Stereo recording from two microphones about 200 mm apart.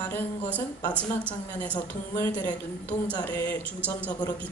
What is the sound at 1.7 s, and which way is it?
A woman's voice, 15° left (ahead or behind).